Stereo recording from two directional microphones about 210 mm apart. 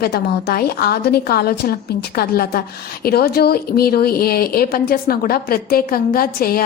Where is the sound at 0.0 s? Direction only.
50° left (ahead or behind).